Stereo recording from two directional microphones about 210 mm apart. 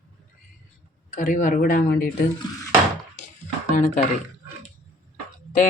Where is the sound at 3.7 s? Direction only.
35° left (ahead or behind).